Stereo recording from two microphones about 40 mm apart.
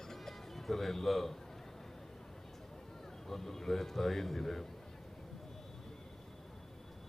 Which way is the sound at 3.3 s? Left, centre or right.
Centre.